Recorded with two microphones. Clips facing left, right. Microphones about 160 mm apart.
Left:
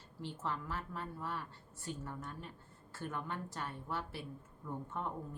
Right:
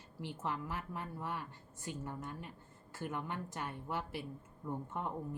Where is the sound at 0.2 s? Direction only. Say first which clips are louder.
Right 1 dB; 15° right (ahead or behind).